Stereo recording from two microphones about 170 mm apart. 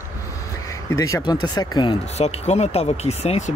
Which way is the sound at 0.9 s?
25° left (ahead or behind).